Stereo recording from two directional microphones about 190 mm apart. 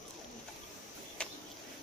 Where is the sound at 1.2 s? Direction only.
5° left (ahead or behind).